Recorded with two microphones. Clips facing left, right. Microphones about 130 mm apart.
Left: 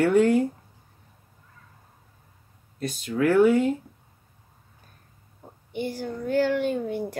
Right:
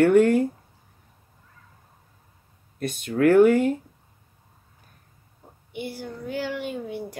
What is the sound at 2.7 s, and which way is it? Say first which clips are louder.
Speech: right 2 dB; 55° right (ahead or behind).